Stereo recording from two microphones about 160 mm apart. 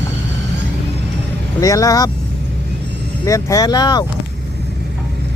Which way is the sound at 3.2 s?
20° left (ahead or behind).